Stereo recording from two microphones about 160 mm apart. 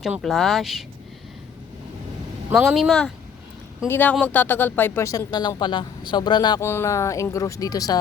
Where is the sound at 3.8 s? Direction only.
10° left (ahead or behind).